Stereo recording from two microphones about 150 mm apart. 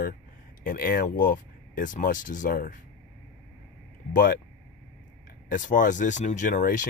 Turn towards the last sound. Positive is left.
turn(degrees=60)  # may be behind; listen again after turning